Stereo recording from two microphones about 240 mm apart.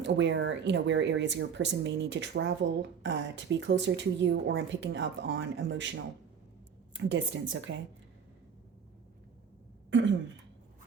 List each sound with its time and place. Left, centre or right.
0.0 s a woman's voice: right
9.9 s throat clearing: right